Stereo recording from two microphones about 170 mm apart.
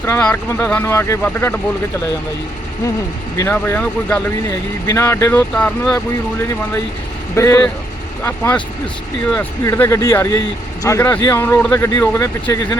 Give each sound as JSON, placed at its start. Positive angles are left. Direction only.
{"t": 0.0, "sound": "speech", "side_deg": 10}
{"t": 3.3, "sound": "speech", "side_deg": 15}
{"t": 7.3, "sound": "speech", "side_deg": 15}
{"t": 9.3, "sound": "speech", "side_deg": 10}